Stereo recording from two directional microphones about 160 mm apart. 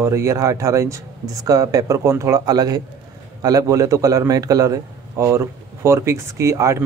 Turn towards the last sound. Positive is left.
turn(degrees=-20)  # may be behind; listen again after turning